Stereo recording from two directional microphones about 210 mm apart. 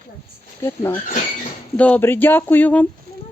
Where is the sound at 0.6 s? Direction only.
15° left (ahead or behind).